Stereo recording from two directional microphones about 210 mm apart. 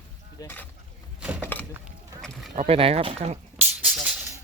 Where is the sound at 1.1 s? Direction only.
5° right (ahead or behind).